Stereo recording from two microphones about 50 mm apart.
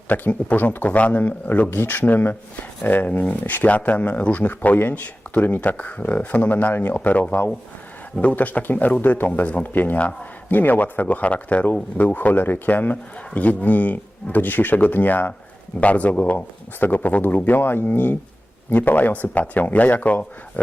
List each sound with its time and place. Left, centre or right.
0.1 s speech: left